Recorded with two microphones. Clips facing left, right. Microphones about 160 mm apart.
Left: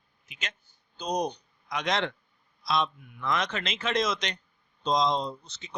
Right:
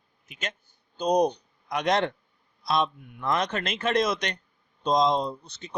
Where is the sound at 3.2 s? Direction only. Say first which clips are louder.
Right 3 dB; 50° right (ahead or behind).